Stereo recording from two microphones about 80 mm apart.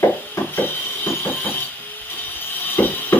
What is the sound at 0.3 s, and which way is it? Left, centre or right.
Wood, left.